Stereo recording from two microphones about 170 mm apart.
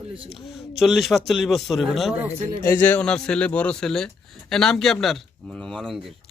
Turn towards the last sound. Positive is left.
turn(degrees=0)  # may be behind; listen again after turning